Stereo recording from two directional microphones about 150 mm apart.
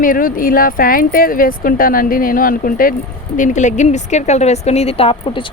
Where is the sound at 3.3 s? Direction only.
55° left (ahead or behind); by 5.5 s 35° left (ahead or behind).